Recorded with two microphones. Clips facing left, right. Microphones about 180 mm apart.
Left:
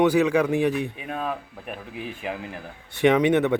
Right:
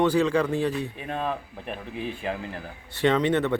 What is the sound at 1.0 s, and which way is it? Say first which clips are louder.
Speech: even; 5° left (ahead or behind).